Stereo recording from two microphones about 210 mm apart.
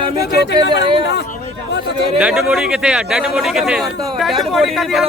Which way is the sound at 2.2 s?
5° right (ahead or behind).